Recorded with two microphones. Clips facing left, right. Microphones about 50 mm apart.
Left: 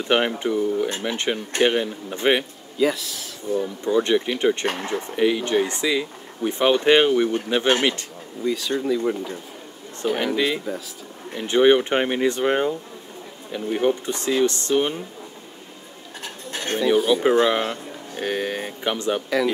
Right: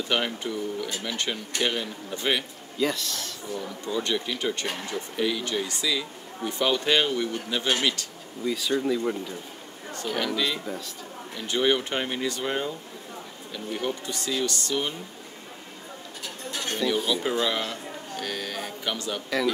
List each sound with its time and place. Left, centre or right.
0.0 s speech: left
2.8 s speech: centre
3.4 s speech: left
4.6 s speech: left
5.1 s speech: left
8.5 s speech: centre
10.0 s speech: left
16.4 s a sound: left
16.8 s speech: left